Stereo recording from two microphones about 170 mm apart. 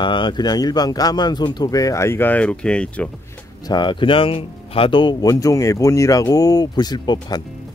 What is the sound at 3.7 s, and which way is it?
Speech, 25° left (ahead or behind).